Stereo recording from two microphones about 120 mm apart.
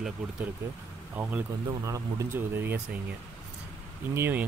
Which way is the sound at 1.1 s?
15° right (ahead or behind).